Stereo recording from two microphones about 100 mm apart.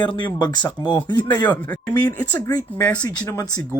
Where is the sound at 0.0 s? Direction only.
50° left (ahead or behind).